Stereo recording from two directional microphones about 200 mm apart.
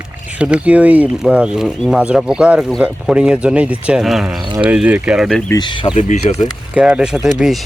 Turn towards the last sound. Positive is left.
turn(degrees=0)  # may be behind; listen again after turning